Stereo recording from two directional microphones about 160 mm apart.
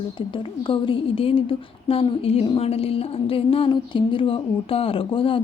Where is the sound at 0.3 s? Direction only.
30° left (ahead or behind).